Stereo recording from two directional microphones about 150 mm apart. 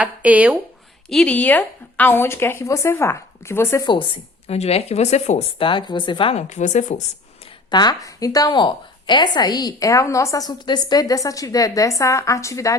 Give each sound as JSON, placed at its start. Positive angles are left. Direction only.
{"t": 0.0, "sound": "speech", "side_deg": -10}
{"t": 1.1, "sound": "speech", "side_deg": 10}
{"t": 3.8, "sound": "speech", "side_deg": 35}
{"t": 4.5, "sound": "speech", "side_deg": 45}
{"t": 6.3, "sound": "speech", "side_deg": 55}
{"t": 7.7, "sound": "a woman's voice", "side_deg": 30}